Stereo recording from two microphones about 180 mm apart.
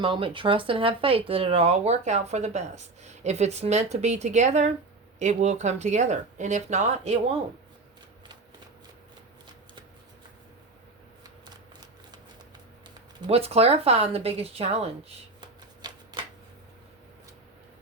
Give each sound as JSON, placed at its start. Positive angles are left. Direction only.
{"t": 0.0, "sound": "speech", "side_deg": -30}
{"t": 11.4, "sound": "a sound", "side_deg": -25}
{"t": 13.2, "sound": "speech", "side_deg": -35}
{"t": 15.8, "sound": "typewriter", "side_deg": -25}